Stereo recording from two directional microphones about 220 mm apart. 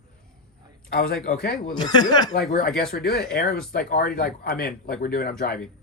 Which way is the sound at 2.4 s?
40° left (ahead or behind).